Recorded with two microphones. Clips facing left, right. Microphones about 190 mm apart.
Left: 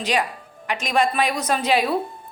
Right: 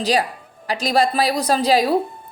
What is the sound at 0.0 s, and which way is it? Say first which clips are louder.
A woman's voice: right 3 dB; 35° right (ahead or behind).